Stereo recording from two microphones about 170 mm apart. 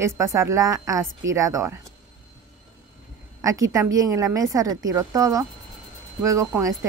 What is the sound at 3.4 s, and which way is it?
Speech, 20° right (ahead or behind).